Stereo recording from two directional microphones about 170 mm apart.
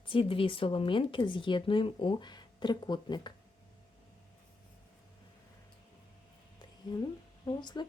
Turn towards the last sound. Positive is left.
turn(degrees=25)  # may be behind; listen again after turning